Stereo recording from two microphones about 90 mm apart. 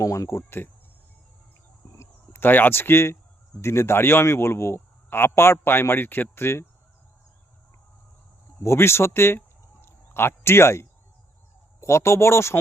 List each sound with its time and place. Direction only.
0.0 s speech: 35° left (ahead or behind)
2.0 s a man's voice: 25° left (ahead or behind)
8.6 s a man's voice: 30° left (ahead or behind)
9.8 s a sound: 25° left (ahead or behind)
11.8 s speech: 30° left (ahead or behind)